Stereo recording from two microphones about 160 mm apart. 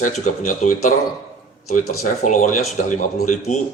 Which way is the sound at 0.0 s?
50° left (ahead or behind).